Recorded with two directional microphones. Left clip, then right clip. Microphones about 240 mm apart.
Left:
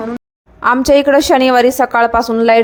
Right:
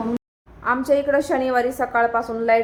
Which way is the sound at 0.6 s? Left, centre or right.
Left.